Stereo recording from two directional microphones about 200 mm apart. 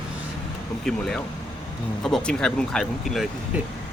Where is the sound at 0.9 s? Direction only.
5° left (ahead or behind).